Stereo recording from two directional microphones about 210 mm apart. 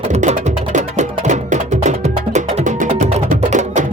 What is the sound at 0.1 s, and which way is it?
Music, 35° right (ahead or behind).